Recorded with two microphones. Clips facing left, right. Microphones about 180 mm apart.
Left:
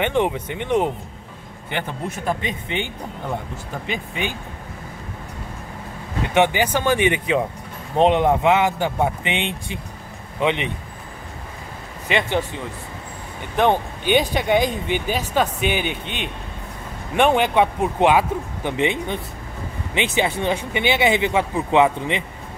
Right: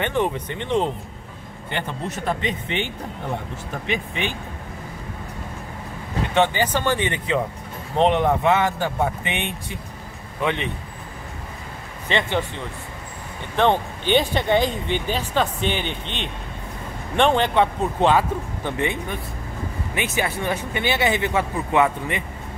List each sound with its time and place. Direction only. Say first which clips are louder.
0.0 s speech: left 2 dB; 15° left (ahead or behind)
6.3 s speech: left 2 dB; 15° left (ahead or behind)
12.1 s speech: left 1 dB; 15° left (ahead or behind)
13.6 s speech: left 1 dB; 10° left (ahead or behind)